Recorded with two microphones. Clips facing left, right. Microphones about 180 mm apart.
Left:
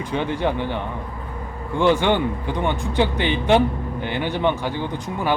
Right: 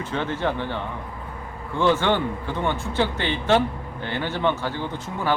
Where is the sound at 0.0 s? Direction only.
15° left (ahead or behind).